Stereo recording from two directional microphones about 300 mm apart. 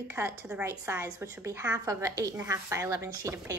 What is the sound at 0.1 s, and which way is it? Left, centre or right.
A woman's voice, centre.